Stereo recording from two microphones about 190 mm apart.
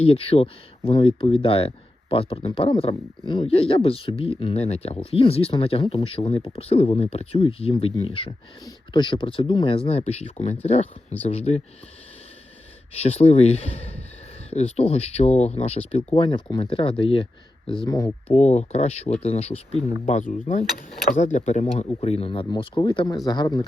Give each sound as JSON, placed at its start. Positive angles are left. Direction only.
{"t": 0.0, "sound": "speech", "side_deg": 30}
{"t": 12.9, "sound": "speech", "side_deg": 30}
{"t": 18.3, "sound": "speech", "side_deg": 35}